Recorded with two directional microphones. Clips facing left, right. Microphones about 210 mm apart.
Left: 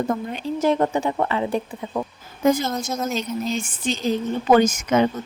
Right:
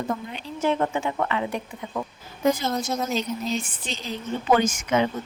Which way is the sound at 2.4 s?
45° left (ahead or behind).